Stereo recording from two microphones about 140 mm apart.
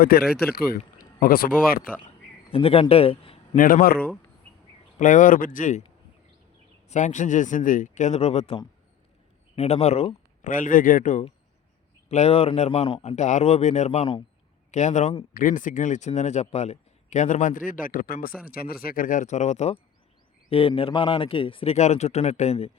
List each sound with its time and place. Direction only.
0.0 s speech: 90° left
2.5 s a man's voice: 45° left (ahead or behind)
3.5 s a man's voice: 75° left (ahead or behind)
3.9 s speech: 10° left (ahead or behind)
4.9 s a man's voice: 65° left (ahead or behind)
6.8 s speech: 60° left (ahead or behind)
9.6 s speech: 50° left (ahead or behind)
10.5 s a man's voice: 70° left (ahead or behind)
12.0 s speech: 50° left (ahead or behind)
15.3 s a man's voice: 75° left (ahead or behind); by 22.7 s 50° left (ahead or behind)